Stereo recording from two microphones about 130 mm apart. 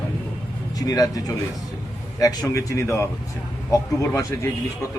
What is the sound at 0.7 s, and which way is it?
Speech, 30° left (ahead or behind).